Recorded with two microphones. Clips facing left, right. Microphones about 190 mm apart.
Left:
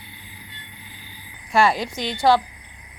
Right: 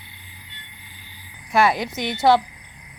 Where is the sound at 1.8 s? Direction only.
20° right (ahead or behind).